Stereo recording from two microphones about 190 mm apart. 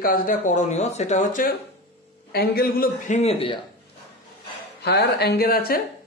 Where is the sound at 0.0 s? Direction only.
50° left (ahead or behind).